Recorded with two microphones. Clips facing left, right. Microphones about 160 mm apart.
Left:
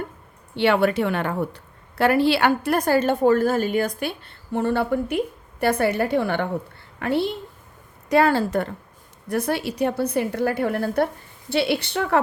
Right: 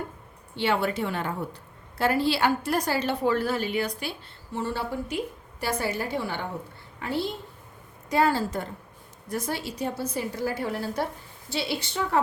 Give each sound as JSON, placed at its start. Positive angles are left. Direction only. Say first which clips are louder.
{"t": 0.5, "sound": "a woman's voice", "louder": "left 7 dB", "side_deg": 65}